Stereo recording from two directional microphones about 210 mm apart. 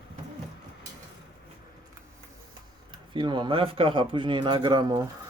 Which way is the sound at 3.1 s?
20° right (ahead or behind).